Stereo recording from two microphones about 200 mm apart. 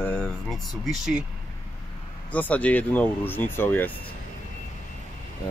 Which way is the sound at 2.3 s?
10° left (ahead or behind).